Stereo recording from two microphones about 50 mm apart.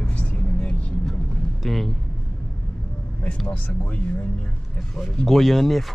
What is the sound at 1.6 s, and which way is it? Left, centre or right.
Speech, centre.